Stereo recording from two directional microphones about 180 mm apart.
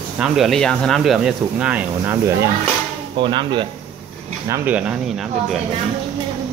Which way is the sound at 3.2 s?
25° right (ahead or behind).